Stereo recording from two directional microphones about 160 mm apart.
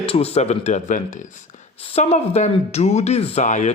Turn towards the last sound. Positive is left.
turn(degrees=45)  # may be behind; listen again after turning